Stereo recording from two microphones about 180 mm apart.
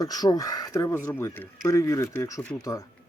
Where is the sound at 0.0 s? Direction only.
20° left (ahead or behind).